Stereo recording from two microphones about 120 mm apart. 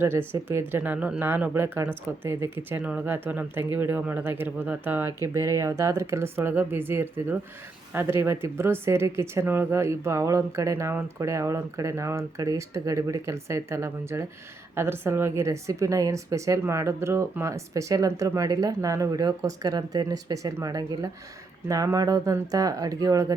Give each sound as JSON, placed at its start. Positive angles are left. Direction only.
{"t": 0.0, "sound": "speech", "side_deg": -20}